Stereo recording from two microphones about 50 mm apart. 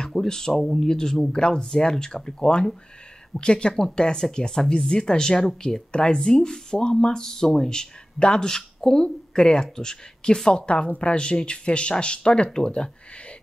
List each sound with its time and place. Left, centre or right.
0.0 s speech: centre